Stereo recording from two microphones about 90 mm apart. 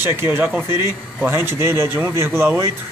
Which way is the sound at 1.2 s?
25° right (ahead or behind).